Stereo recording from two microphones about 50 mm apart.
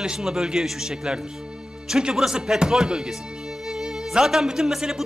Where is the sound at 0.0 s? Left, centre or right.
Centre.